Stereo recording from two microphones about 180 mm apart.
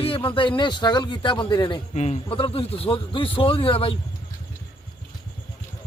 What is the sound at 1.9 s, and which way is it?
A man's voice, 35° left (ahead or behind).